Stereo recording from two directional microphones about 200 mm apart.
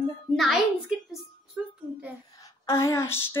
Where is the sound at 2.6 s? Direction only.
15° left (ahead or behind).